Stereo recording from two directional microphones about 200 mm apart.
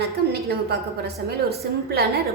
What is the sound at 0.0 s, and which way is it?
A woman's voice, 55° right (ahead or behind).